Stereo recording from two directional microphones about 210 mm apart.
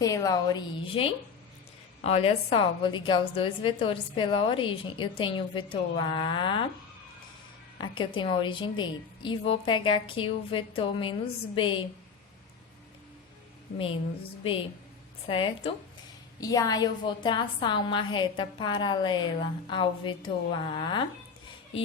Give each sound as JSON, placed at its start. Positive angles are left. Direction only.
{"t": 0.0, "sound": "a woman's voice", "side_deg": 15}
{"t": 7.8, "sound": "a woman's voice", "side_deg": 20}
{"t": 13.7, "sound": "a woman's voice", "side_deg": 25}
{"t": 15.3, "sound": "a woman's voice", "side_deg": 25}